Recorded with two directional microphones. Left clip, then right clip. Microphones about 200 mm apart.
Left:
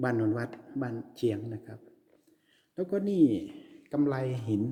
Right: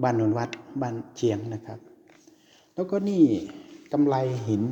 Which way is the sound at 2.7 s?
15° left (ahead or behind).